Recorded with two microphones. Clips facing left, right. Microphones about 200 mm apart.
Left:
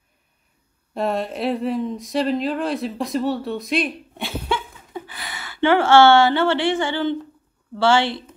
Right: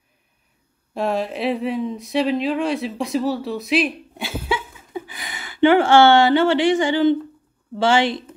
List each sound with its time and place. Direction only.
0.9 s speech: centre (ahead or behind); by 8.4 s 15° right (ahead or behind)